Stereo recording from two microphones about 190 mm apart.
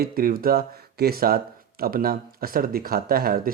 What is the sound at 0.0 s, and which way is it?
Speech, 50° right (ahead or behind).